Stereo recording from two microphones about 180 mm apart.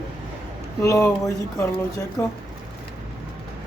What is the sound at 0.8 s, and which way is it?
Speech, 20° left (ahead or behind).